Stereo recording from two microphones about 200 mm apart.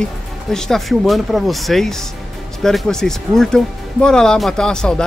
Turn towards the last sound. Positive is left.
turn(degrees=5)  # may be behind; listen again after turning